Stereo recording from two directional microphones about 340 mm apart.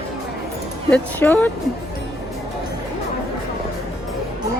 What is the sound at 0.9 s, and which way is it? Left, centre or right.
Speech, centre.